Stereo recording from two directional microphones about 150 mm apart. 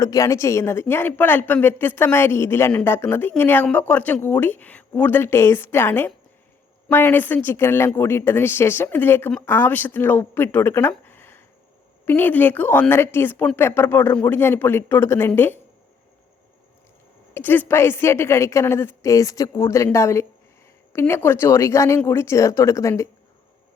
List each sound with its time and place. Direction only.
0.0 s a woman's voice: 20° left (ahead or behind)
17.3 s a woman's voice: 15° left (ahead or behind)